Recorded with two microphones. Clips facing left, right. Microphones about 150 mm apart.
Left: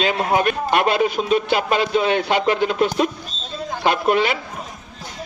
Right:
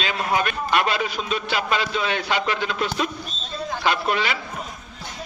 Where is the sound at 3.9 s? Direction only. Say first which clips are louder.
Left 5 dB; 50° left (ahead or behind).